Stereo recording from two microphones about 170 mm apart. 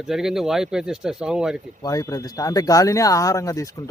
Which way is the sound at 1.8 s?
20° left (ahead or behind).